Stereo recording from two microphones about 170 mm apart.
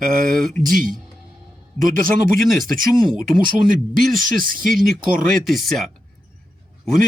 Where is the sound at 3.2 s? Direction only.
55° right (ahead or behind).